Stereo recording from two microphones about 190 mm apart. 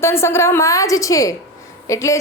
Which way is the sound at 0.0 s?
15° left (ahead or behind).